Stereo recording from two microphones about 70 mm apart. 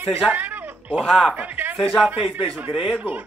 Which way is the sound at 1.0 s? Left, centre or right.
Centre.